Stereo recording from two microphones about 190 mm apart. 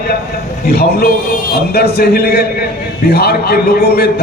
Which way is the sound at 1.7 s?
55° left (ahead or behind).